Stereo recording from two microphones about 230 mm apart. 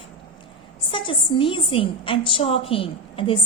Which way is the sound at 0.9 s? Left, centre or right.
Left.